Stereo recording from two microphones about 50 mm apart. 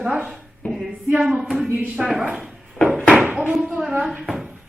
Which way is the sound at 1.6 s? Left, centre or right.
Right.